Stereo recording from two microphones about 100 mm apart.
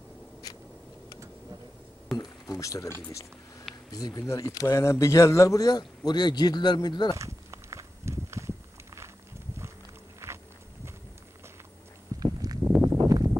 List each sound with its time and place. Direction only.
2.1 s speech: 40° left (ahead or behind)
7.2 s walk: 30° right (ahead or behind)
10.2 s walk: 25° right (ahead or behind)
12.2 s a sound: 40° right (ahead or behind)